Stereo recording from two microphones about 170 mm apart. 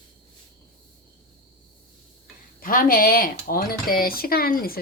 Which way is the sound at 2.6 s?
55° left (ahead or behind).